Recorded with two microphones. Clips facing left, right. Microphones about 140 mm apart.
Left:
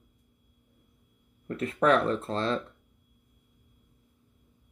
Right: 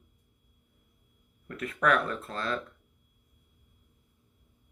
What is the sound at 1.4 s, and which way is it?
Speech, 30° left (ahead or behind).